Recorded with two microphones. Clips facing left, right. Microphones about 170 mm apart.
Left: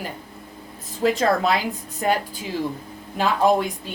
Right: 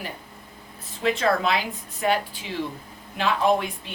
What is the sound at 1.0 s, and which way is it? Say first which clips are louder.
Speech: left 3 dB; 40° left (ahead or behind).